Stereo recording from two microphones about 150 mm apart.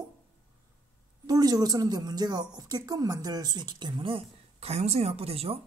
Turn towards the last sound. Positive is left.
turn(degrees=-40)  # may be behind; listen again after turning